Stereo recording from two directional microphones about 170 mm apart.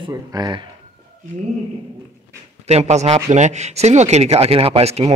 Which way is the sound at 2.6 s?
40° right (ahead or behind).